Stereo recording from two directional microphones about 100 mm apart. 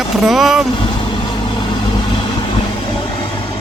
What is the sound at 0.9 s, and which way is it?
Vehicle, 55° left (ahead or behind).